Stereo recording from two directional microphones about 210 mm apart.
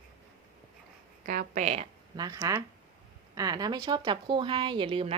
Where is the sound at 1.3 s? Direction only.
40° right (ahead or behind).